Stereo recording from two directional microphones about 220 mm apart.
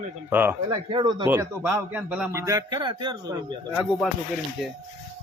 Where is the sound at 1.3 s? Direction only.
10° right (ahead or behind).